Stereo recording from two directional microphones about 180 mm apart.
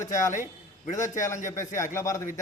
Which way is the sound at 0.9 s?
45° left (ahead or behind).